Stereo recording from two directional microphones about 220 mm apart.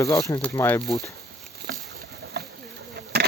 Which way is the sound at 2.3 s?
50° right (ahead or behind).